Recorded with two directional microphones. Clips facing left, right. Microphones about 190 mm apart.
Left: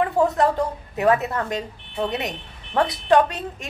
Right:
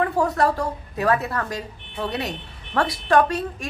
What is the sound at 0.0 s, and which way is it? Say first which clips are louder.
A woman's voice: left 1 dB; 20° left (ahead or behind).